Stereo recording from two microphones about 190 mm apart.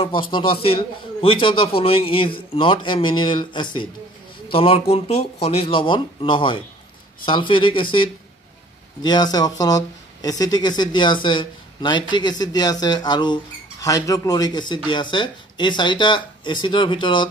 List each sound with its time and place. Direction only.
0.0 s speech: 25° left (ahead or behind)